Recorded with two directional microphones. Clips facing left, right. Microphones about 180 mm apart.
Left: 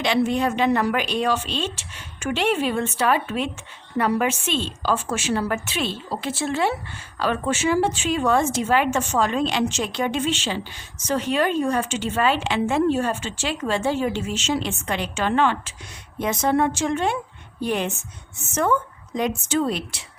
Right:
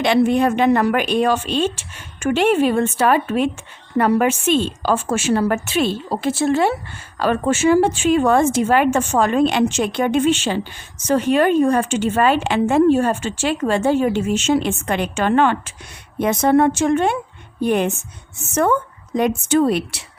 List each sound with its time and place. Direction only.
0.0 s a woman's voice: 55° right (ahead or behind)